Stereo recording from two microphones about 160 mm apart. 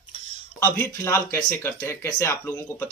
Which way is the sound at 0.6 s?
15° left (ahead or behind).